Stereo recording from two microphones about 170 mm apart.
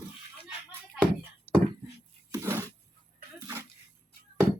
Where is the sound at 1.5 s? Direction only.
10° right (ahead or behind).